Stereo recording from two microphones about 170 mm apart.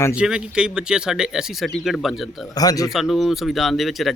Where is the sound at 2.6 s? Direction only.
20° left (ahead or behind).